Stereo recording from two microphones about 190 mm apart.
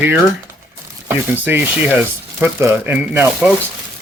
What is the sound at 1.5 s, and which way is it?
Speech, 10° right (ahead or behind).